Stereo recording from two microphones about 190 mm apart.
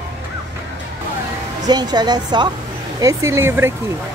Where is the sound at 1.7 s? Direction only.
20° right (ahead or behind).